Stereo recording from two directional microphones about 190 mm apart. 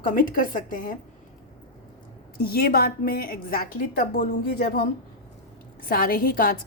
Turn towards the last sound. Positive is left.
turn(degrees=50)  # may be behind; listen again after turning